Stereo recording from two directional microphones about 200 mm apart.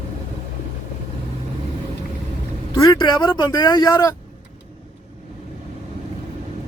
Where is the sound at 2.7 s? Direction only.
20° left (ahead or behind).